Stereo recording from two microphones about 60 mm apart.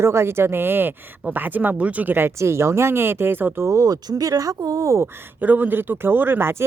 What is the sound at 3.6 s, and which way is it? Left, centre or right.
Speech, right.